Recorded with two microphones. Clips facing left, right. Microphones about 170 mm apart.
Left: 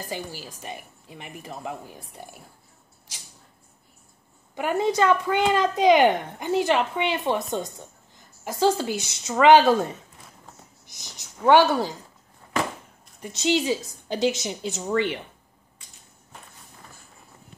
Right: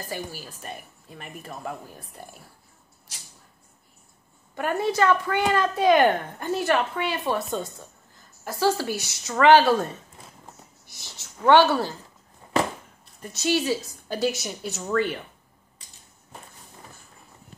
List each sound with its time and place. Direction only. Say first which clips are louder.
0.1 s speech: right 1 dB; 20° left (ahead or behind)
4.6 s speech: left 1 dB; 15° left (ahead or behind)
13.4 s a woman's voice: left 1 dB; 20° left (ahead or behind)